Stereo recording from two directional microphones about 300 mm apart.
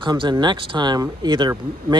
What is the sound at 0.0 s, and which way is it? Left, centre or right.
Speech, centre.